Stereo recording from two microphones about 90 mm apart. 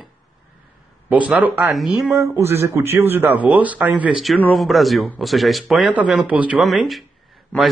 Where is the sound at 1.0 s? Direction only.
15° right (ahead or behind).